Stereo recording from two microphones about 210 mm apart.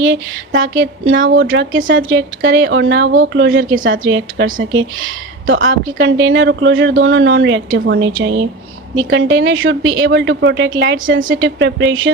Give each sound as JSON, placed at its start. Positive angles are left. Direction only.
{"t": 0.0, "sound": "speech", "side_deg": -65}
{"t": 5.5, "sound": "speech", "side_deg": -55}